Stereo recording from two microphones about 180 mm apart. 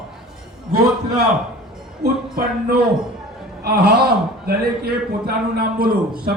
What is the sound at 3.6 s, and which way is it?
A man's voice, 60° right (ahead or behind).